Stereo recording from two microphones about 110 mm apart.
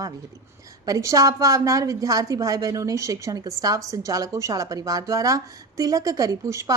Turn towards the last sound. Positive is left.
turn(degrees=-30)  # may be behind; listen again after turning